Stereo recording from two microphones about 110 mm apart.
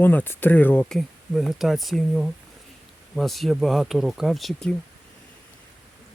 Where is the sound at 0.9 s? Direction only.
Centre (ahead or behind).